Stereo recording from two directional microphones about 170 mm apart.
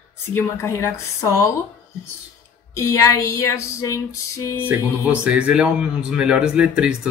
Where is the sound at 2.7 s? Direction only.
15° left (ahead or behind).